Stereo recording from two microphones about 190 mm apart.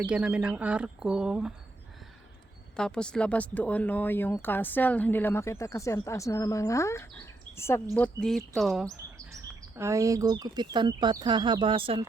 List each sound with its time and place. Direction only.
0.0 s speech: 5° right (ahead or behind)
2.7 s a woman's voice: 5° left (ahead or behind)
9.1 s speech: 15° right (ahead or behind)